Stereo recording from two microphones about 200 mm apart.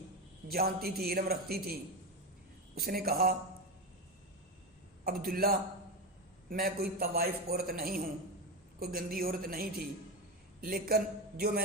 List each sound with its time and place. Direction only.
0.4 s a man's voice: 50° right (ahead or behind)
5.0 s a man's voice: 45° right (ahead or behind)